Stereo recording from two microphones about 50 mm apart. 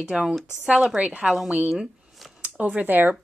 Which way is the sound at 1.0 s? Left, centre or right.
Right.